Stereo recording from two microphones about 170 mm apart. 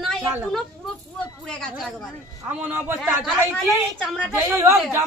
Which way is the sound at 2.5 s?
10° right (ahead or behind).